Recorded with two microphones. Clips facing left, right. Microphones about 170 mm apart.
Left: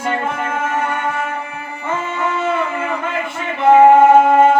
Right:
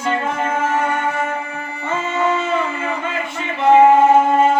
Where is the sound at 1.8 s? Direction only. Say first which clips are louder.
Right 2 dB; 55° left (ahead or behind).